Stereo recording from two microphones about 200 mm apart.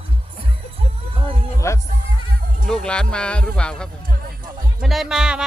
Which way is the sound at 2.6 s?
5° left (ahead or behind).